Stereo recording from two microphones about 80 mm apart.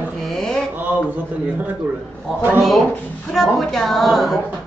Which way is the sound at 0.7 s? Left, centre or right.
Right.